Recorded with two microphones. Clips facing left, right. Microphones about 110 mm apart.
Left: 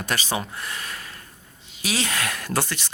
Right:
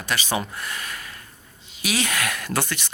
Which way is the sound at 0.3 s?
25° left (ahead or behind).